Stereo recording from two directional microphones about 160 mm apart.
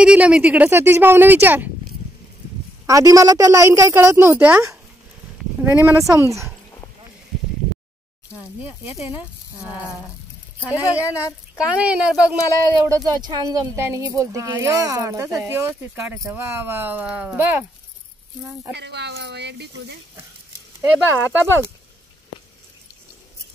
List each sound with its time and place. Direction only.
0.0 s speech: 5° right (ahead or behind)
2.9 s speech: 20° right (ahead or behind)
10.6 s speech: 10° right (ahead or behind)
12.8 s speech: 20° right (ahead or behind)
18.7 s speech: 90° right
21.2 s speech: 10° right (ahead or behind)